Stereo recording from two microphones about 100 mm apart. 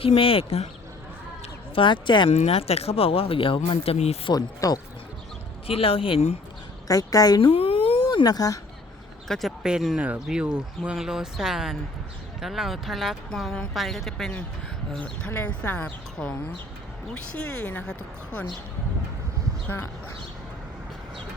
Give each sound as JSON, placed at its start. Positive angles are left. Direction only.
{"t": 0.0, "sound": "speech", "side_deg": 70}
{"t": 1.7, "sound": "speech", "side_deg": 55}
{"t": 2.3, "sound": "speech", "side_deg": 90}
{"t": 4.3, "sound": "speech", "side_deg": 40}
{"t": 5.6, "sound": "speech", "side_deg": 70}
{"t": 6.8, "sound": "speech", "side_deg": 35}
{"t": 7.4, "sound": "speech", "side_deg": 65}
{"t": 8.0, "sound": "speech", "side_deg": 40}
{"t": 9.2, "sound": "speech", "side_deg": 5}
{"t": 14.9, "sound": "speech", "side_deg": 10}
{"t": 17.3, "sound": "speech", "side_deg": 15}
{"t": 19.6, "sound": "speech", "side_deg": 25}